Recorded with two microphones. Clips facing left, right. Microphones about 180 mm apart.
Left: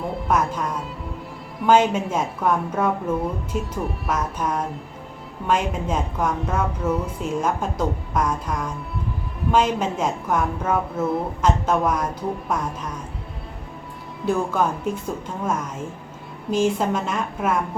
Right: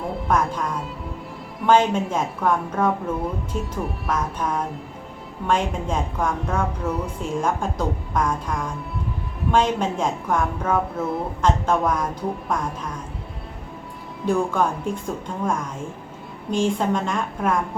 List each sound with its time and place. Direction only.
0.0 s a woman's voice: centre (ahead or behind)
14.3 s a woman's voice: 5° left (ahead or behind)
16.5 s a woman's voice: 5° left (ahead or behind)